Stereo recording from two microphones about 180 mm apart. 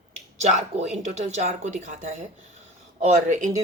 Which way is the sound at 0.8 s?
40° right (ahead or behind).